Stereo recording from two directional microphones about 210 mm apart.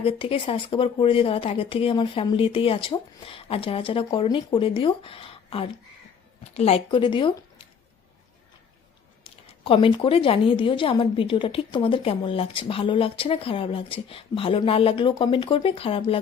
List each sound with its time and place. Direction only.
0.0 s a woman's voice: 25° left (ahead or behind)
9.6 s a woman's voice: 25° left (ahead or behind)